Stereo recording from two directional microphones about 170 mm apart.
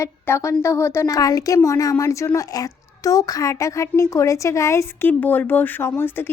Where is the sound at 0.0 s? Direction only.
15° left (ahead or behind).